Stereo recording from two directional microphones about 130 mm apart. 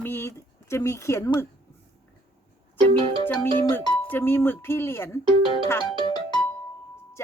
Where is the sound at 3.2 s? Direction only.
15° left (ahead or behind).